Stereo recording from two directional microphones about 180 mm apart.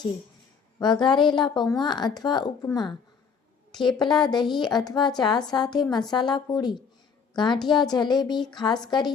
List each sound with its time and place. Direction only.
0.8 s a woman's voice: 25° left (ahead or behind)